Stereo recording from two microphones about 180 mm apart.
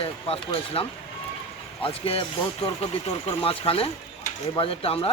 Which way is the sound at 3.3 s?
30° left (ahead or behind).